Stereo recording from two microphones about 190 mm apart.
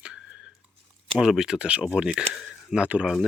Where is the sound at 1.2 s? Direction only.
5° right (ahead or behind).